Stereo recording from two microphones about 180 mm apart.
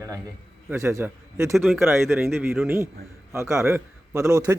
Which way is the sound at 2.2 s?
15° right (ahead or behind).